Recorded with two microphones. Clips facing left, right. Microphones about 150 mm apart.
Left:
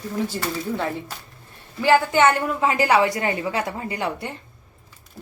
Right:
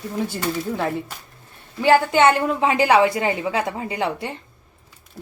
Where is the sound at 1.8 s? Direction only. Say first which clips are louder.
Right 2 dB; 20° right (ahead or behind).